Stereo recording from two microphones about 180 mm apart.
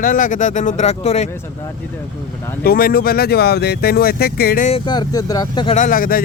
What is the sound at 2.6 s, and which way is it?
Speech, 55° left (ahead or behind).